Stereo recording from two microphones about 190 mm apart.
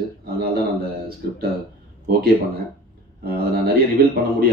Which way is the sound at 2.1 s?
50° right (ahead or behind).